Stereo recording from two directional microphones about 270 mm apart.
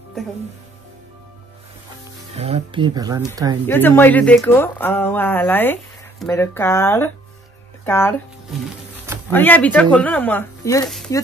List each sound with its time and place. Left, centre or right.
2.3 s speech: right
3.6 s speech: centre
9.3 s speech: centre